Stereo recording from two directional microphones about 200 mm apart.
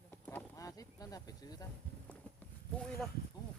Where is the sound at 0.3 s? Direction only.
15° left (ahead or behind).